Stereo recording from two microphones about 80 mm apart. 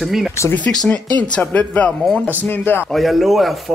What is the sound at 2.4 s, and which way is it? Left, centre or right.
Speech, left.